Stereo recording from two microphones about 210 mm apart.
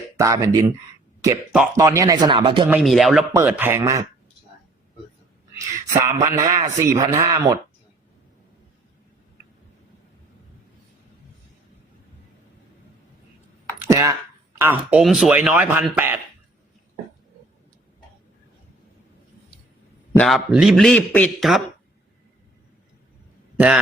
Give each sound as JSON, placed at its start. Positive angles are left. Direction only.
{"t": 0.2, "sound": "a man's voice", "side_deg": -15}
{"t": 1.7, "sound": "a man's voice", "side_deg": -15}
{"t": 2.6, "sound": "a man's voice", "side_deg": -5}
{"t": 5.5, "sound": "a man's voice", "side_deg": -15}
{"t": 13.7, "sound": "a sound", "side_deg": -15}
{"t": 14.6, "sound": "a man's voice", "side_deg": -10}
{"t": 20.1, "sound": "a man's voice", "side_deg": 0}
{"t": 23.6, "sound": "a man's voice", "side_deg": -5}